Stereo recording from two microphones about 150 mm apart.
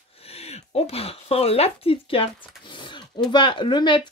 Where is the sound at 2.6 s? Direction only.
35° left (ahead or behind).